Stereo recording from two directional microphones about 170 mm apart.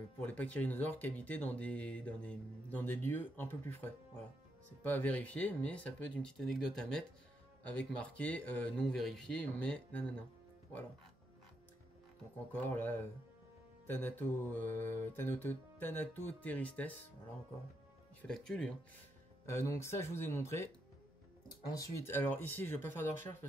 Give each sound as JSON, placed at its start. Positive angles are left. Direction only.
{"t": 0.2, "sound": "speech", "side_deg": 10}
{"t": 12.5, "sound": "speech", "side_deg": 10}
{"t": 18.2, "sound": "speech", "side_deg": 5}
{"t": 19.5, "sound": "speech", "side_deg": 15}
{"t": 21.6, "sound": "speech", "side_deg": 20}